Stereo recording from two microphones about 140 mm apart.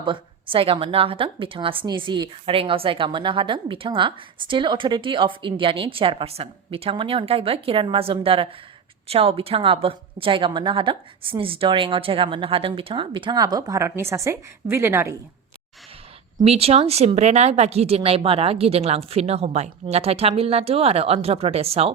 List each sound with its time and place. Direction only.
0.0 s a woman's voice: 35° right (ahead or behind); by 15.1 s 20° right (ahead or behind)
16.4 s speech: 45° right (ahead or behind)